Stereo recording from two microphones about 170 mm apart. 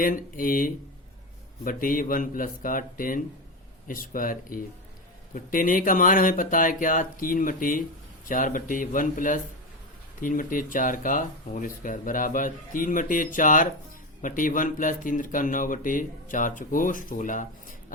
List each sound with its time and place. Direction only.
0.0 s speech: 55° left (ahead or behind)